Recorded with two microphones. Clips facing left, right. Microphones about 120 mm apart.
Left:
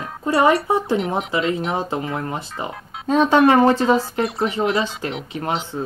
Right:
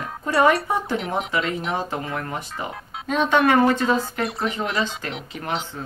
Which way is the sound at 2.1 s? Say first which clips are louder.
Left 3 dB; 25° left (ahead or behind).